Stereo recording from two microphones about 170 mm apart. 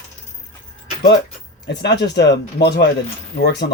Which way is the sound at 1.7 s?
85° left.